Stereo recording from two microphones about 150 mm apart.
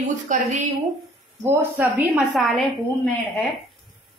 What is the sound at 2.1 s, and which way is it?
A woman's voice, centre (ahead or behind).